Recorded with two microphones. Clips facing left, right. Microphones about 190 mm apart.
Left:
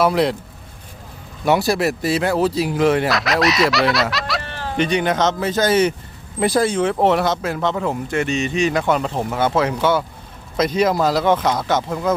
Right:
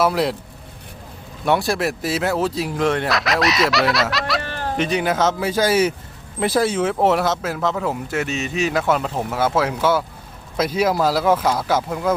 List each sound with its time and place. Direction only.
0.0 s speech: centre (ahead or behind)
1.5 s speech: centre (ahead or behind)
4.4 s a sound: 55° right (ahead or behind)
4.8 s speech: centre (ahead or behind)